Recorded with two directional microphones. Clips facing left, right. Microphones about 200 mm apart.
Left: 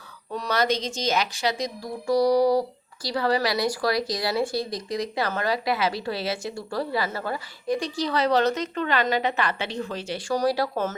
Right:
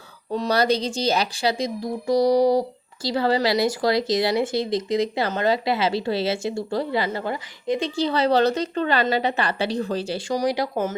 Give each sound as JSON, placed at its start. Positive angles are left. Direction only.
{"t": 0.3, "sound": "speech", "side_deg": -30}
{"t": 10.2, "sound": "speech", "side_deg": -15}